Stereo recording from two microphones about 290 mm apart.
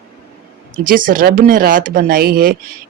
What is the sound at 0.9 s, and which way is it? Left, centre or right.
Speech, right.